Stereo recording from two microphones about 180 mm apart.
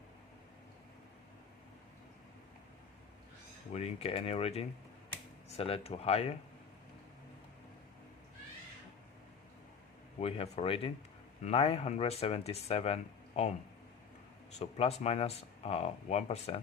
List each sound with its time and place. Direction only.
3.7 s speech: 35° left (ahead or behind)
10.2 s speech: 35° left (ahead or behind)
14.6 s speech: 35° left (ahead or behind)